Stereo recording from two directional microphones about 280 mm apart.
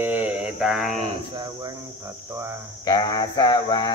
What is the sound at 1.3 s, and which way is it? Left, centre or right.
Speech, centre.